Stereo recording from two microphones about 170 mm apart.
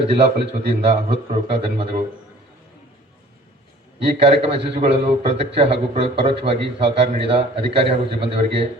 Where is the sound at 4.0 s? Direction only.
35° right (ahead or behind).